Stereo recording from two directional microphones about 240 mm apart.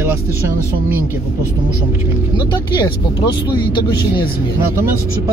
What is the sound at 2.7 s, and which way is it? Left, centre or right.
Speech, centre.